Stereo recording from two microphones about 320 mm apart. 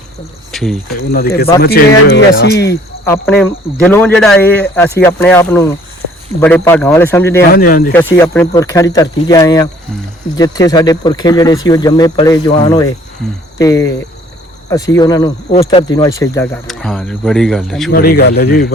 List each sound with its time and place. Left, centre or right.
0.5 s speech: centre
1.9 s speech: left
3.1 s speech: centre
7.5 s a man's voice: left
7.9 s speech: centre
17.9 s a man's voice: left